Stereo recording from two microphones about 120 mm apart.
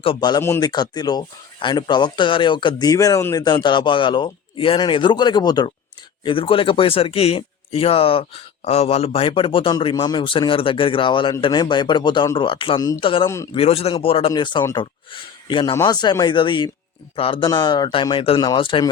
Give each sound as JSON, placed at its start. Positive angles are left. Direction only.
{"t": 0.2, "sound": "speech", "side_deg": 35}
{"t": 3.4, "sound": "speech", "side_deg": 40}
{"t": 6.2, "sound": "speech", "side_deg": 45}
{"t": 9.9, "sound": "a man's voice", "side_deg": 30}
{"t": 10.2, "sound": "speech", "side_deg": 45}
{"t": 13.2, "sound": "a man's voice", "side_deg": 25}
{"t": 13.5, "sound": "a man's voice", "side_deg": 55}
{"t": 15.7, "sound": "speech", "side_deg": 30}
{"t": 17.4, "sound": "speech", "side_deg": 35}